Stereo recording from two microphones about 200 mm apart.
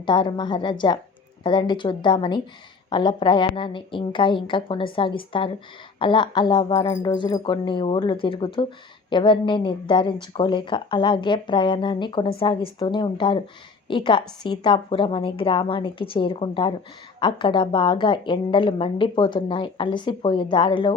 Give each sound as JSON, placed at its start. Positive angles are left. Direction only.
{"t": 0.0, "sound": "a woman's voice", "side_deg": 25}